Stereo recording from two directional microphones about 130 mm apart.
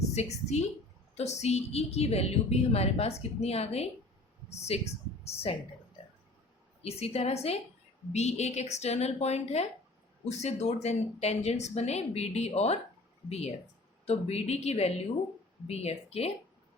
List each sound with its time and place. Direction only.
0.1 s a woman's voice: 55° left (ahead or behind)
6.8 s a woman's voice: 50° left (ahead or behind)